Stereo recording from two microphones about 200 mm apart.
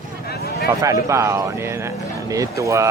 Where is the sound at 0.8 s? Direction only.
15° right (ahead or behind).